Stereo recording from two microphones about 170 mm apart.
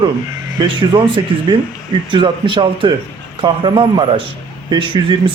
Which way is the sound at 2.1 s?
30° right (ahead or behind).